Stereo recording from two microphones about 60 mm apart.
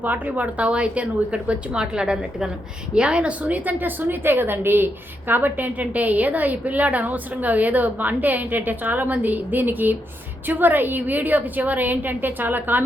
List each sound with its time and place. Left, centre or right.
0.0 s a woman's voice: right